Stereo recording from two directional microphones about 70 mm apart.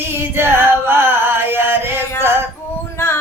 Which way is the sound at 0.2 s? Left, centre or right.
Right.